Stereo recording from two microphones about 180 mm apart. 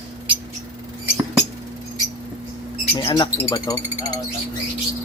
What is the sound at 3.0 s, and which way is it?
Speech, 25° left (ahead or behind).